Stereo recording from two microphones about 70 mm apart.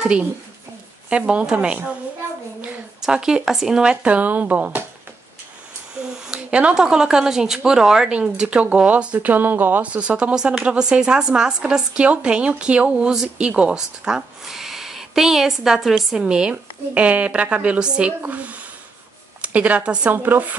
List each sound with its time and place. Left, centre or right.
0.0 s speech: centre
3.0 s speech: centre
6.2 s speech: centre
20.1 s speech: right